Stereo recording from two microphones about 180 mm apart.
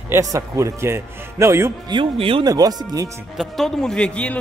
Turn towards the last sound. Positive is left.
turn(degrees=5)  # may be behind; listen again after turning